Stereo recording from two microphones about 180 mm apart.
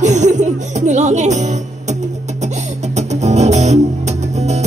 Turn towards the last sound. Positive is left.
turn(degrees=-40)  # may be behind; listen again after turning